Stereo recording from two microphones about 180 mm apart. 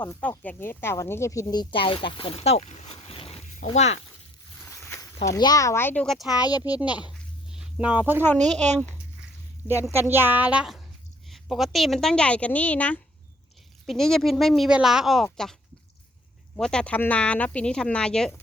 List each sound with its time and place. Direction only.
0.0 s speech: 10° left (ahead or behind); by 3.9 s 40° left (ahead or behind)
4.9 s speech: 15° left (ahead or behind); by 6.4 s centre (ahead or behind)
6.4 s speech: 20° left (ahead or behind)
6.7 s speech: 5° right (ahead or behind)
7.1 s a sound: 5° right (ahead or behind)
8.5 s speech: 40° right (ahead or behind)
9.9 s a woman's voice: 10° right (ahead or behind)
16.6 s speech: 5° left (ahead or behind)